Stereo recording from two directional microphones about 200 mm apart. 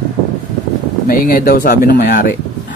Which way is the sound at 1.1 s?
45° left (ahead or behind).